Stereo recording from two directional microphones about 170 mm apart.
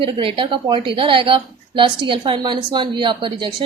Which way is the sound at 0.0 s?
30° right (ahead or behind).